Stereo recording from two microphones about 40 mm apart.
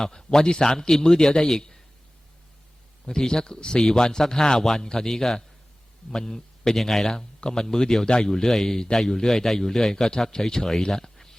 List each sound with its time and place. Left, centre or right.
0.0 s a man's voice: centre
3.1 s a man's voice: centre
10.9 s a sound: centre